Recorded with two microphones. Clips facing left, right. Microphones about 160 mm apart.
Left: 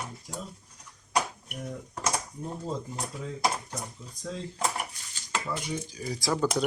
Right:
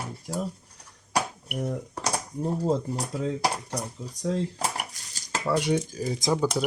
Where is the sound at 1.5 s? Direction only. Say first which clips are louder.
Right 8 dB; 65° right (ahead or behind).